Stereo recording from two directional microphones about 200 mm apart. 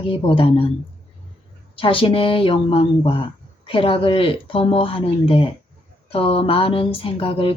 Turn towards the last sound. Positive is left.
turn(degrees=25)  # may be behind; listen again after turning